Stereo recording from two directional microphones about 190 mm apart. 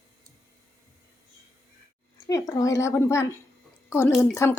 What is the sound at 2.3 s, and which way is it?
A woman's voice, 20° left (ahead or behind).